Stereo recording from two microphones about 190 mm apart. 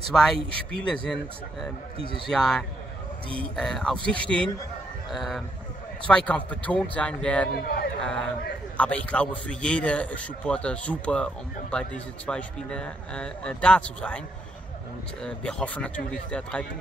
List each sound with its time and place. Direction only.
0.1 s a man's voice: 5° left (ahead or behind)
7.6 s a sound: 55° left (ahead or behind)
8.0 s a man's voice: 5° left (ahead or behind)
12.3 s a man's voice: 5° left (ahead or behind)
15.2 s a man's voice: 5° left (ahead or behind)